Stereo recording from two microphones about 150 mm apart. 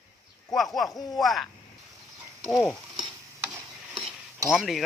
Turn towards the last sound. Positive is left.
turn(degrees=0)  # may be behind; listen again after turning